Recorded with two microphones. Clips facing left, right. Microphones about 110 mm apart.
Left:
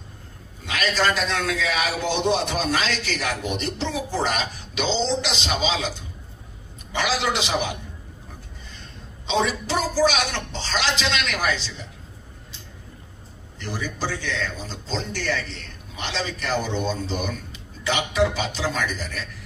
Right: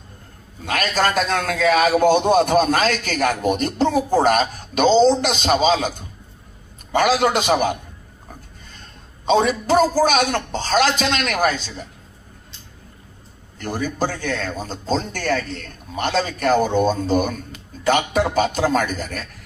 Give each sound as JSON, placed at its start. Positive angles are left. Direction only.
{"t": 0.7, "sound": "a man's voice", "side_deg": -50}
{"t": 13.6, "sound": "speech", "side_deg": -50}